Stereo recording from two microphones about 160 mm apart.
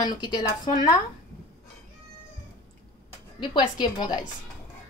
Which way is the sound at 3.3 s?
30° left (ahead or behind).